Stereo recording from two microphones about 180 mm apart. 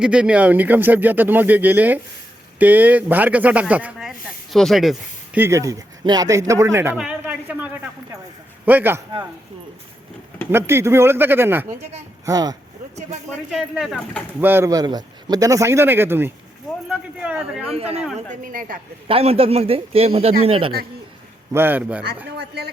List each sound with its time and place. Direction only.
0.0 s speech: 5° right (ahead or behind)
6.5 s a sound: 15° right (ahead or behind)
8.6 s speech: 10° right (ahead or behind)
10.5 s speech: 15° right (ahead or behind)
13.5 s speech: centre (ahead or behind)
14.4 s speech: 15° right (ahead or behind)
16.9 s a sound: 5° right (ahead or behind)
17.7 s a man's voice: 35° right (ahead or behind)
18.4 s a man's voice: 50° right (ahead or behind)
19.0 s a man's voice: 30° right (ahead or behind)
21.5 s speech: 10° right (ahead or behind)
22.4 s a woman's voice: 65° right (ahead or behind)